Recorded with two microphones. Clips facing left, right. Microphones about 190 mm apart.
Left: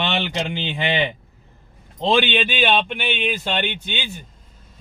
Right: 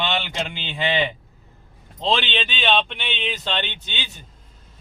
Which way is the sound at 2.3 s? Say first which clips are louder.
Left 3 dB; 10° left (ahead or behind).